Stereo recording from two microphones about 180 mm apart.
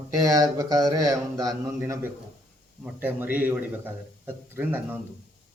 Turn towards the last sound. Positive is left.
turn(degrees=-10)  # may be behind; listen again after turning